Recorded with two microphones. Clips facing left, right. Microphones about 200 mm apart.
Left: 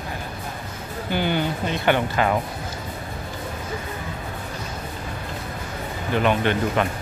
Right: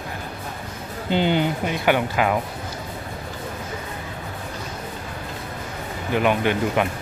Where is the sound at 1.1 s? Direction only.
20° right (ahead or behind).